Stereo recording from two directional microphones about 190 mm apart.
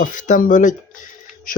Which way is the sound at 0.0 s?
45° left (ahead or behind).